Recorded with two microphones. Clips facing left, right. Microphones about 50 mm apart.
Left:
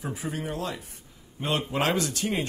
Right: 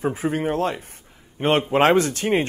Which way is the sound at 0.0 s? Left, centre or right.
Right.